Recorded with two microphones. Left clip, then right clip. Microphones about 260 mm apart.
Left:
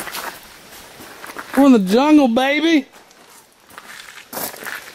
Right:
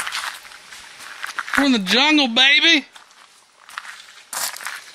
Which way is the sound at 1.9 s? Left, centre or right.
Right.